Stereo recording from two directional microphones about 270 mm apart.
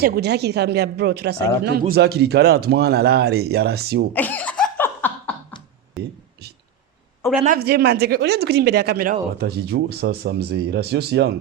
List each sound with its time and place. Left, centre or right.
0.0 s speech: right
4.1 s laughter: centre
7.4 s speech: right